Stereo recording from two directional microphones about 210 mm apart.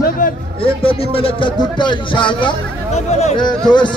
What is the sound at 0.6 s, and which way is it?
A man's voice, 25° left (ahead or behind).